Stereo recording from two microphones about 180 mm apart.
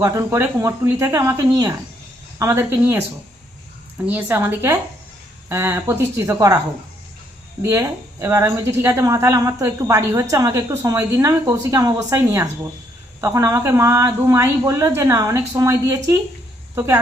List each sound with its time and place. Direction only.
0.0 s a woman's voice: 15° right (ahead or behind)
4.0 s a woman's voice: 10° right (ahead or behind)
7.6 s a woman's voice: 15° right (ahead or behind)